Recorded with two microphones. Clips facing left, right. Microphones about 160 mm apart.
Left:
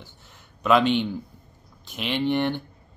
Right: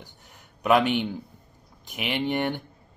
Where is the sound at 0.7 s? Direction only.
10° right (ahead or behind).